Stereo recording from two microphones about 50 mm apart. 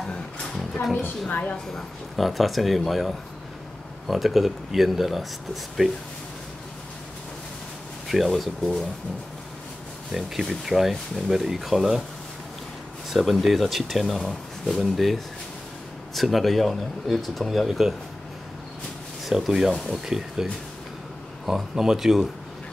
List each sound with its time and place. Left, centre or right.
1.3 s a woman's voice: left
1.7 s speech: centre
8.1 s speech: centre
10.1 s speech: centre
13.1 s speech: centre
19.2 s speech: centre
21.5 s speech: centre